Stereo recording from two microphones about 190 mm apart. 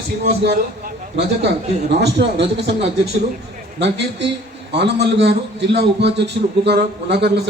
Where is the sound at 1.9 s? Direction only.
60° right (ahead or behind).